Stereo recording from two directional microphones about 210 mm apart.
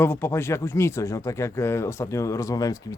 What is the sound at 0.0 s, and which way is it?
Speech, 10° left (ahead or behind).